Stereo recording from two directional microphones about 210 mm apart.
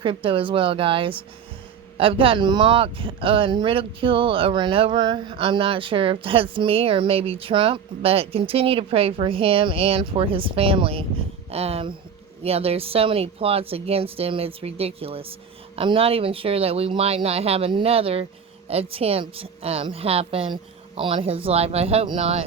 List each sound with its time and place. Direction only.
0.0 s speech: 25° right (ahead or behind)